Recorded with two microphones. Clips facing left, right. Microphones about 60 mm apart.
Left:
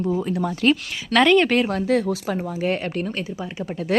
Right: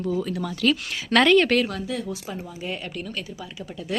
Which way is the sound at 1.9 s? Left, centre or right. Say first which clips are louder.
Left 9 dB; left.